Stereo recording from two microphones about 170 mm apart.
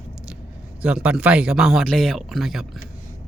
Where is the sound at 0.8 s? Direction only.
5° right (ahead or behind).